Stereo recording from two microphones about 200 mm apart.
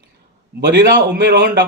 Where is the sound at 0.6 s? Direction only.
55° right (ahead or behind).